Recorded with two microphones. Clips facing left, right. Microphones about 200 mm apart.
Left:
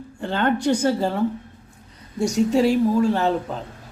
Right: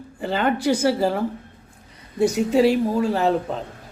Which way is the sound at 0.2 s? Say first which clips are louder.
Even; 5° right (ahead or behind).